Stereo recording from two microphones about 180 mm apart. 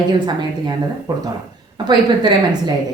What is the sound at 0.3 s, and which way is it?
A woman's voice, 25° right (ahead or behind).